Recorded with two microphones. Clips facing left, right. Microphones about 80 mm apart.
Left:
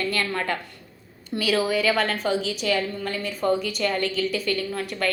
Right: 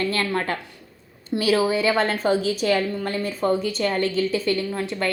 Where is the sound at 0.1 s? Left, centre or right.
Right.